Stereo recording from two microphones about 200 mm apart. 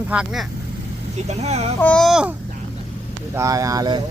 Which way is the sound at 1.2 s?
35° right (ahead or behind).